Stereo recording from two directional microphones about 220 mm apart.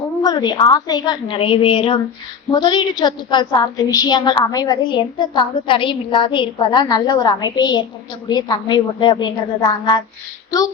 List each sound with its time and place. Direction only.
0.2 s a woman's voice: 20° left (ahead or behind)